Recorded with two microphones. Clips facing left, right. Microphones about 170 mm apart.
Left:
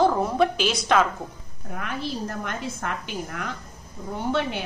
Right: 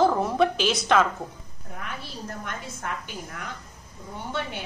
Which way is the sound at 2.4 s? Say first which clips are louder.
Left 4 dB; 90° left.